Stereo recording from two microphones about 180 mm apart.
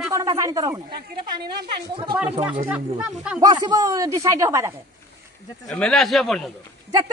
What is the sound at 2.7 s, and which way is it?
Speech, 5° right (ahead or behind).